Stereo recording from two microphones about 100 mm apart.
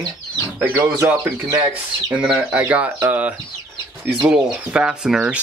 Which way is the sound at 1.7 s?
5° right (ahead or behind).